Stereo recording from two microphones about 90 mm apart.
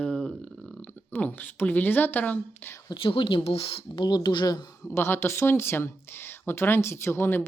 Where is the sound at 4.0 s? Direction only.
55° left (ahead or behind).